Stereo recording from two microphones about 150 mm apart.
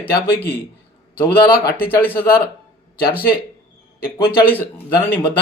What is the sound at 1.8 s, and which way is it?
Speech, 15° left (ahead or behind).